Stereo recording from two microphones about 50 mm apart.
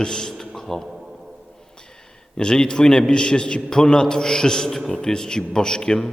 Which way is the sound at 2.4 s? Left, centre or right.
Centre.